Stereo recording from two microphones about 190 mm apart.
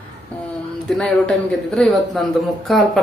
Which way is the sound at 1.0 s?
5° left (ahead or behind).